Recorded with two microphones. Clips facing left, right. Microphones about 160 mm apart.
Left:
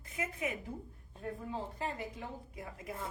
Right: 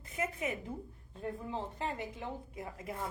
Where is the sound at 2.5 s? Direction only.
25° right (ahead or behind).